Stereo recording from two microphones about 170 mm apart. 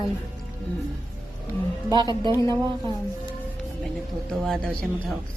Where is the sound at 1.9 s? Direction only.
25° right (ahead or behind).